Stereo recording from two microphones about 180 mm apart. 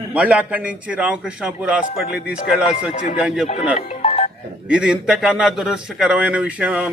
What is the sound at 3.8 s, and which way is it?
Music, 35° left (ahead or behind).